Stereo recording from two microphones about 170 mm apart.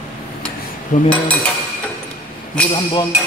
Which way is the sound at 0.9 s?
50° left (ahead or behind).